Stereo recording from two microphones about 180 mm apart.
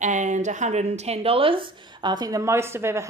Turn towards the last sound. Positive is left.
turn(degrees=-15)  # may be behind; listen again after turning